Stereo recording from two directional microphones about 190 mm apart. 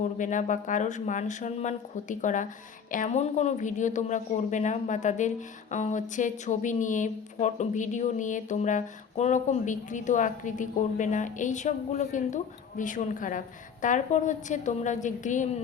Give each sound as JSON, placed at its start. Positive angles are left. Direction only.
{"t": 0.2, "sound": "speech", "side_deg": 40}